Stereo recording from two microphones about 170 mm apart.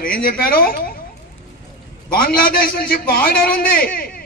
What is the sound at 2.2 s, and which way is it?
A man's voice, 60° left (ahead or behind).